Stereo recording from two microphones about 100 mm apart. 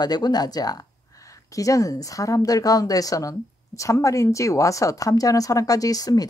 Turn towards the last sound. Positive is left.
turn(degrees=35)  # may be behind; listen again after turning